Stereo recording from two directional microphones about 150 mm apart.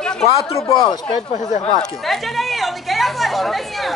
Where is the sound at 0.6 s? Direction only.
30° left (ahead or behind).